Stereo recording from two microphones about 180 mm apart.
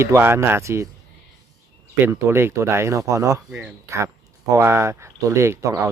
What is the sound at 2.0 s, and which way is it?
Speech, 15° right (ahead or behind).